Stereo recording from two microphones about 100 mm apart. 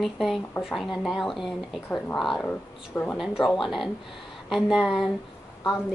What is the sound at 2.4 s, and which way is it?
Speech, 20° left (ahead or behind).